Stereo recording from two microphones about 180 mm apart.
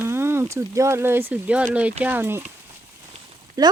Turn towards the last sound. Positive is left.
turn(degrees=-20)  # may be behind; listen again after turning